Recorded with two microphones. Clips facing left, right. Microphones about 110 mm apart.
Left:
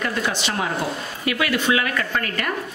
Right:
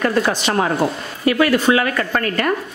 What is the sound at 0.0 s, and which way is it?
Speech, 50° right (ahead or behind).